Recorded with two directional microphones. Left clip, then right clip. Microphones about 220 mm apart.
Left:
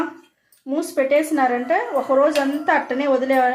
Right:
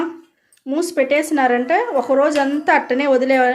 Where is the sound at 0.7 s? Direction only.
50° right (ahead or behind).